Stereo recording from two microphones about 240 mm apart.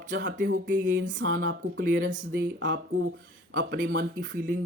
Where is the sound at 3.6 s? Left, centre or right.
Right.